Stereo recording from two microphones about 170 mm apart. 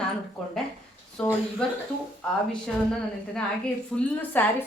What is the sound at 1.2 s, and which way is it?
Speech, 5° left (ahead or behind).